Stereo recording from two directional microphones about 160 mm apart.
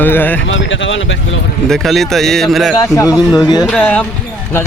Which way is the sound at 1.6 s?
Centre (ahead or behind).